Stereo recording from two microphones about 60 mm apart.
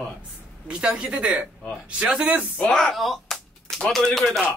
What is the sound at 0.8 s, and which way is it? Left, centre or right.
Speech, centre.